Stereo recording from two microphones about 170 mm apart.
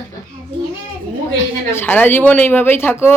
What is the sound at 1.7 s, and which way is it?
Music, 10° left (ahead or behind).